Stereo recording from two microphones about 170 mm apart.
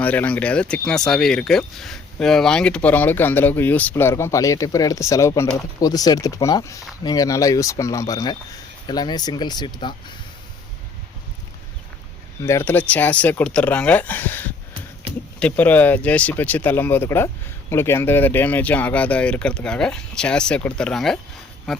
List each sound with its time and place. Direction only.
0.0 s speech: 10° left (ahead or behind); by 9.9 s 25° left (ahead or behind)
12.4 s speech: 15° left (ahead or behind); by 21.8 s centre (ahead or behind)